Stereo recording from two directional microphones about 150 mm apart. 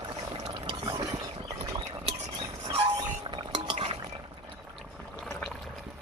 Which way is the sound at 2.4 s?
40° right (ahead or behind).